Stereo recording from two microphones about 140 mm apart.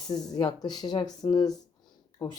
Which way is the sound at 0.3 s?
30° left (ahead or behind).